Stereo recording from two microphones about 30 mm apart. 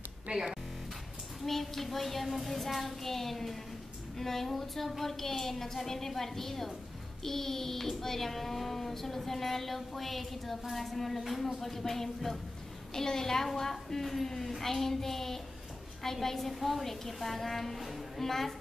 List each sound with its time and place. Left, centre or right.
0.3 s music: right
1.4 s a child's voice: centre
17.8 s music: centre
18.2 s a child's voice: centre